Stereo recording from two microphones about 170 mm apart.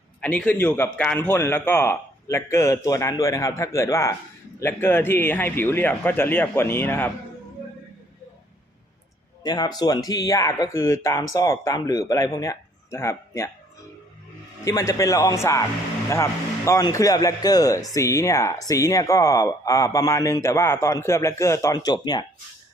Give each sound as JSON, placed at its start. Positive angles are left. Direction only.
{"t": 0.2, "sound": "a man's voice", "side_deg": 5}
{"t": 9.4, "sound": "a man's voice", "side_deg": 25}
{"t": 14.6, "sound": "a man's voice", "side_deg": 20}